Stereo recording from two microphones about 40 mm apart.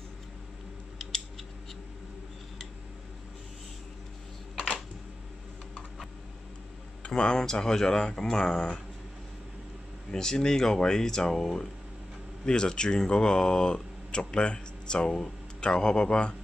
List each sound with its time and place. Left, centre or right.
7.1 s speech: centre
10.1 s speech: centre